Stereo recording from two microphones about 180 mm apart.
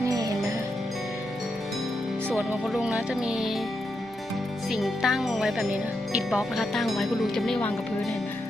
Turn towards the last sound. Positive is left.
turn(degrees=0)  # may be behind; listen again after turning